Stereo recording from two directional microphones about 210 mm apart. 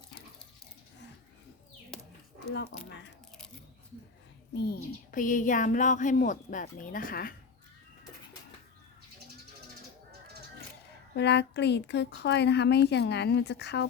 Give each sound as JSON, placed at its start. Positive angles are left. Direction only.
{"t": 4.5, "sound": "speech", "side_deg": 50}
{"t": 11.1, "sound": "speech", "side_deg": 55}